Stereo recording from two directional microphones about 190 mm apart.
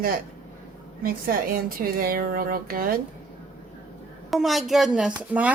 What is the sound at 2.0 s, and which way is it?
Speech, 50° right (ahead or behind).